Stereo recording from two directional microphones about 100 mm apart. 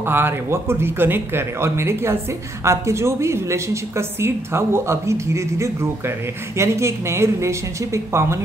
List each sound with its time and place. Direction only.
0.0 s a woman's voice: 20° right (ahead or behind)